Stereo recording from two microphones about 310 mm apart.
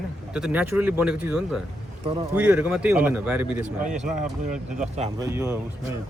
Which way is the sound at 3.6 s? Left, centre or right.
Right.